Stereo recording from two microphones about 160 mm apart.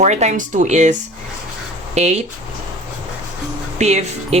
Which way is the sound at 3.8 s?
45° right (ahead or behind).